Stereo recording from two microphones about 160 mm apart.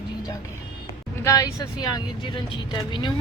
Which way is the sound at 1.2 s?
20° left (ahead or behind).